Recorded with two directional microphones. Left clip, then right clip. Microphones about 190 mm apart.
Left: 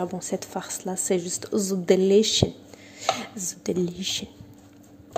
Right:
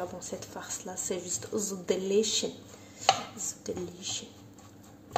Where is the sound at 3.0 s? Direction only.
35° left (ahead or behind).